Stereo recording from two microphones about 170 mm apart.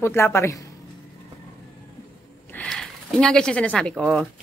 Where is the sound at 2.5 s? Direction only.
5° left (ahead or behind).